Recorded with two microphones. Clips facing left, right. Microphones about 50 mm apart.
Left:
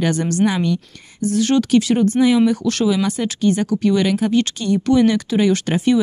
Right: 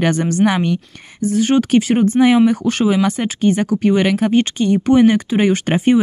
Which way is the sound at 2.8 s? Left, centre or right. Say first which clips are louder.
Right 3 dB; right.